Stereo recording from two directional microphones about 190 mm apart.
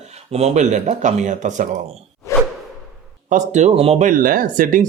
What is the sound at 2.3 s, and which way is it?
Whoosh, 15° left (ahead or behind).